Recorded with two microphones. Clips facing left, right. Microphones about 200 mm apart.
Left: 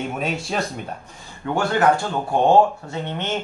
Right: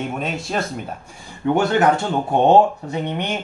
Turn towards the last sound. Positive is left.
turn(degrees=-15)  # may be behind; listen again after turning